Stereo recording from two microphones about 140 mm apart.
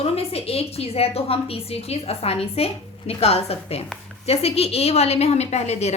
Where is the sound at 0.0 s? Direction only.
45° left (ahead or behind).